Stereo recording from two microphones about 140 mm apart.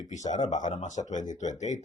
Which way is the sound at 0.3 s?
60° left (ahead or behind).